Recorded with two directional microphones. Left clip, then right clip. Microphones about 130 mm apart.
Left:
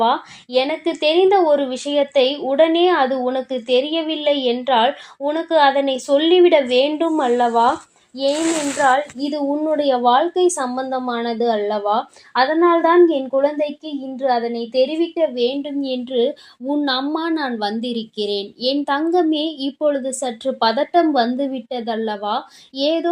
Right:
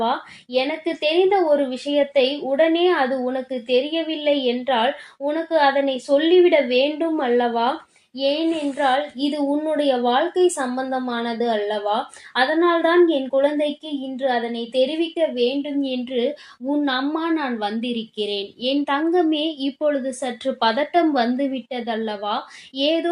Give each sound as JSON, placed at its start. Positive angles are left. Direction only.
{"t": 0.0, "sound": "speech", "side_deg": 45}
{"t": 8.8, "sound": "a woman's voice", "side_deg": 30}
{"t": 9.2, "sound": "a woman's voice", "side_deg": 45}